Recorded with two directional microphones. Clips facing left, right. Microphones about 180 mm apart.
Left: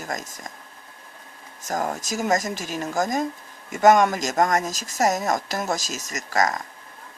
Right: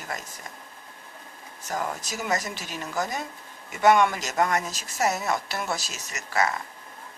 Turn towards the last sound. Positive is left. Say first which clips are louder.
# left 3 dB
turn(degrees=40)  # may be behind; listen again after turning